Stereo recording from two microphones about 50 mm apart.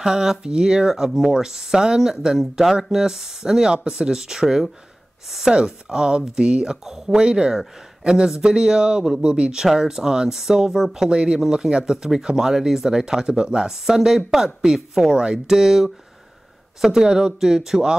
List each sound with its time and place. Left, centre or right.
0.0 s speech: centre